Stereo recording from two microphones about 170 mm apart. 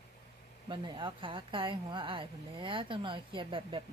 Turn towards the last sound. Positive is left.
turn(degrees=-30)  # may be behind; listen again after turning